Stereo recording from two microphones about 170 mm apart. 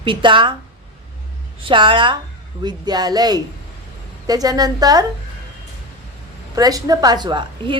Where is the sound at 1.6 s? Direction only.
30° right (ahead or behind).